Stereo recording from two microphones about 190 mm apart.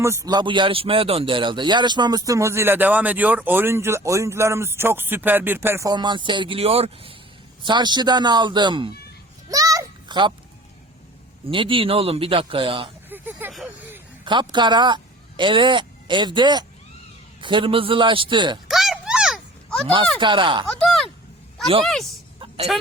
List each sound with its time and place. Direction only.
0.0 s speech: 15° right (ahead or behind)
9.5 s a sound: 20° right (ahead or behind)
11.4 s speech: 25° right (ahead or behind)
13.1 s a sound: 10° right (ahead or behind)
13.5 s speech: centre (ahead or behind)
14.3 s speech: 25° right (ahead or behind)
18.7 s a sound: centre (ahead or behind)
20.1 s speech: 25° right (ahead or behind)
20.7 s speech: centre (ahead or behind)